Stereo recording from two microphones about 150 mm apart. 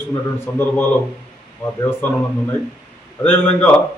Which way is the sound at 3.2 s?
10° left (ahead or behind).